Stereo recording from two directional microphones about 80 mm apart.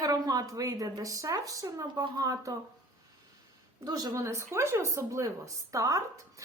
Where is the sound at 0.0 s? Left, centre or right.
Right.